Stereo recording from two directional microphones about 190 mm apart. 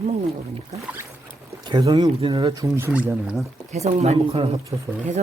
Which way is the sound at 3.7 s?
35° right (ahead or behind).